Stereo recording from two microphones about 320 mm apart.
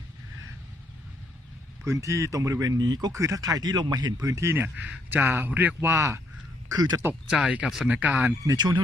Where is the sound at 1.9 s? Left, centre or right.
Centre.